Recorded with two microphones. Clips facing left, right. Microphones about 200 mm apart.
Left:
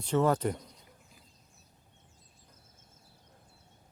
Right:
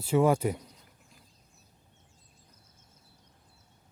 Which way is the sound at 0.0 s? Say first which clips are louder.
Right 3 dB; 10° right (ahead or behind).